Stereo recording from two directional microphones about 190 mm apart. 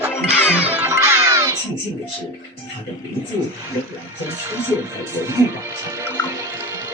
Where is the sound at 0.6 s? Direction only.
10° right (ahead or behind).